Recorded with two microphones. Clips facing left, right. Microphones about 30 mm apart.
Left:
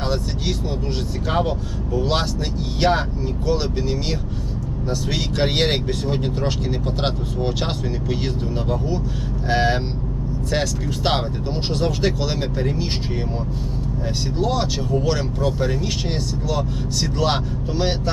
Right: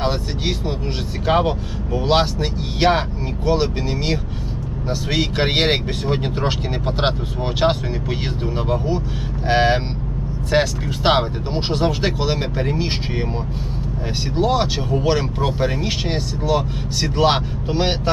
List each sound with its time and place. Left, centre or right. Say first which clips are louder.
0.0 s speech: right 2 dB; right
14.3 s speech: right 5 dB; right